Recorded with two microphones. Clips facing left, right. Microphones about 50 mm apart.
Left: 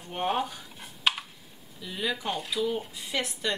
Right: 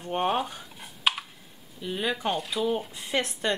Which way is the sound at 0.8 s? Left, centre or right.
Centre.